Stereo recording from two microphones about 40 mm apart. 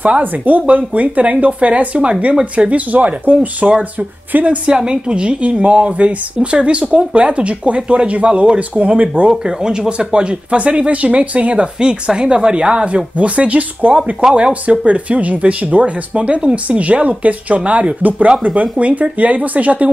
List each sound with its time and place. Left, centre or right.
0.2 s speech: right
3.6 s a woman's voice: right
4.3 s a woman's voice: right
4.6 s a woman's voice: right
9.4 s a woman's voice: centre
11.8 s a woman's voice: centre; by 19.9 s right